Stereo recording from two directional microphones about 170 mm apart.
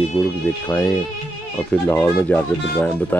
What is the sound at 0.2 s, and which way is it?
Speech, 15° left (ahead or behind).